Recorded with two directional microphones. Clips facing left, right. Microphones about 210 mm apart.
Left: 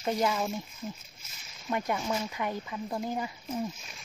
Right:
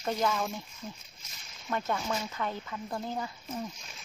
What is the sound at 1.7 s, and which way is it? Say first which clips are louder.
Speech: left 2 dB; 15° left (ahead or behind).